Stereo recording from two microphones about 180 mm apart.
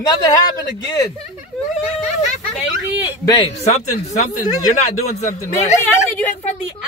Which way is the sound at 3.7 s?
40° left (ahead or behind).